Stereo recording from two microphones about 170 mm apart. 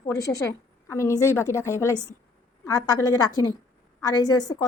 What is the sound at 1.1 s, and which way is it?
Speech, 15° right (ahead or behind).